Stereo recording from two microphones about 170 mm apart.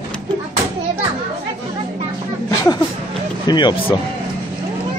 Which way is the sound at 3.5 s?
25° left (ahead or behind).